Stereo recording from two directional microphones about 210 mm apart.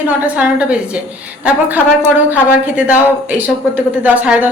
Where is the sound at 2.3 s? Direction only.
5° right (ahead or behind).